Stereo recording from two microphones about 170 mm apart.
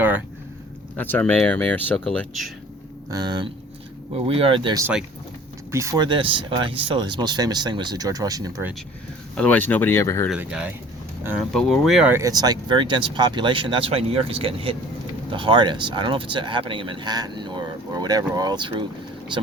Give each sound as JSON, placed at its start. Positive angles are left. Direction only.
{"t": 0.9, "sound": "speech", "side_deg": 10}
{"t": 3.1, "sound": "speech", "side_deg": -25}
{"t": 9.3, "sound": "speech", "side_deg": 5}
{"t": 10.2, "sound": "speech", "side_deg": -5}
{"t": 12.1, "sound": "speech", "side_deg": -20}